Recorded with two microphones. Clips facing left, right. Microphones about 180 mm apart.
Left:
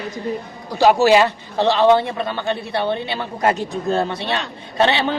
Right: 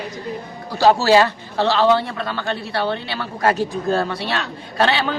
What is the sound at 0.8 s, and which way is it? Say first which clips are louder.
A man's voice: left 1 dB; 15° left (ahead or behind).